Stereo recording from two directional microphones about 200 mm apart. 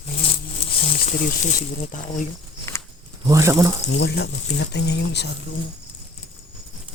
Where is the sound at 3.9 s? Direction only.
55° left (ahead or behind).